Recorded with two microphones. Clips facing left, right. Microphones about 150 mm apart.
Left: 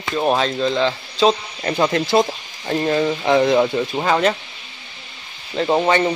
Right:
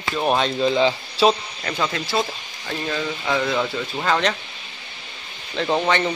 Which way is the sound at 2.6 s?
35° left (ahead or behind).